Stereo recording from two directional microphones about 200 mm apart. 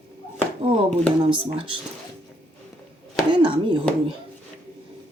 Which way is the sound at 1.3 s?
25° right (ahead or behind).